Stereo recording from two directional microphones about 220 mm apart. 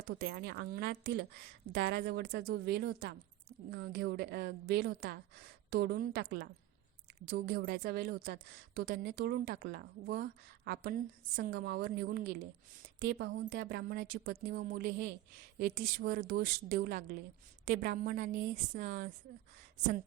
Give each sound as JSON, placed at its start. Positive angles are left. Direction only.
{"t": 0.1, "sound": "a woman's voice", "side_deg": -45}